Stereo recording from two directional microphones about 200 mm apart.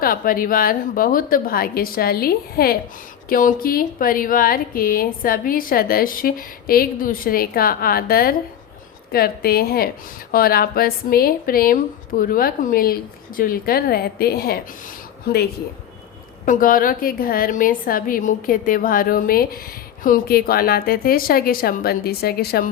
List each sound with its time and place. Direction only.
0.0 s speech: 45° left (ahead or behind)
16.5 s speech: 45° left (ahead or behind)